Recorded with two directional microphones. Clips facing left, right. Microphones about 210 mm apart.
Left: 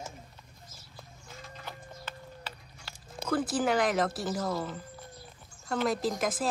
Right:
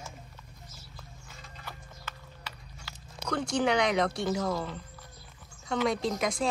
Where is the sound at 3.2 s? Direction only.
5° left (ahead or behind).